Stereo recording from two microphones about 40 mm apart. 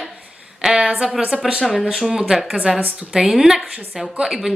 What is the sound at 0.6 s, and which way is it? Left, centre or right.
Speech, centre.